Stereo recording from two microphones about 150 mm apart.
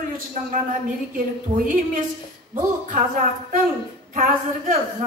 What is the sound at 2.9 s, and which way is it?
A woman's voice, 60° right (ahead or behind).